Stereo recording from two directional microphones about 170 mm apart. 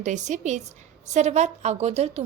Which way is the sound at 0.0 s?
45° right (ahead or behind).